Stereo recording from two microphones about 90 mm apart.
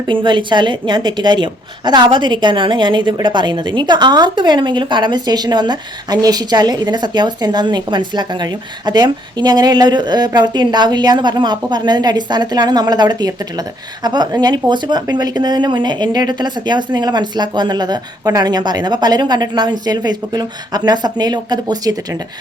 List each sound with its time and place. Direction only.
0.1 s a woman's voice: 65° right (ahead or behind); by 21.9 s 50° right (ahead or behind)